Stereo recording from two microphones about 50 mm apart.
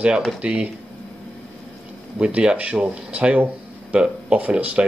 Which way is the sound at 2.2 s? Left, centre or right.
Right.